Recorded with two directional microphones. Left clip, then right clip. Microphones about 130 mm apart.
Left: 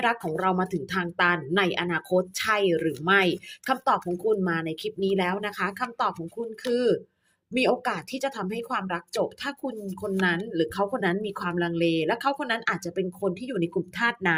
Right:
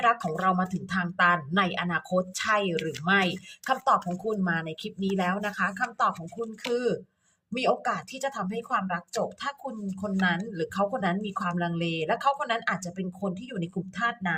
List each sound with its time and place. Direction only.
0.0 s a woman's voice: 25° left (ahead or behind)
14.0 s speech: 45° left (ahead or behind)